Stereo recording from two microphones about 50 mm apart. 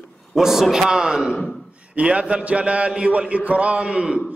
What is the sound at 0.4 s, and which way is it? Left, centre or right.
A man's voice, centre.